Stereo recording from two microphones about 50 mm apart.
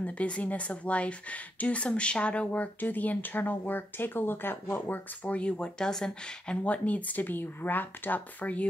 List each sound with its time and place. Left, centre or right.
0.0 s speech: left